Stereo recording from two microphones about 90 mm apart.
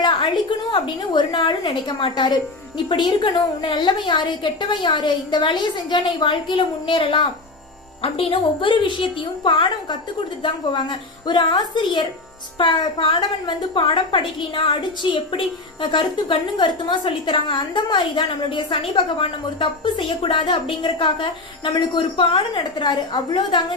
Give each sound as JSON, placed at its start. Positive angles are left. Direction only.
{"t": 0.0, "sound": "a woman's voice", "side_deg": 55}
{"t": 8.0, "sound": "a woman's voice", "side_deg": 90}
{"t": 21.7, "sound": "speech", "side_deg": 60}